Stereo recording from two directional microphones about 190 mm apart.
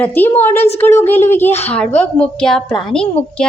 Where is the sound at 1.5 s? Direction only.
35° left (ahead or behind).